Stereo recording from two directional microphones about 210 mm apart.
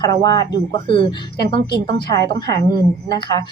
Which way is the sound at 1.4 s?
20° left (ahead or behind).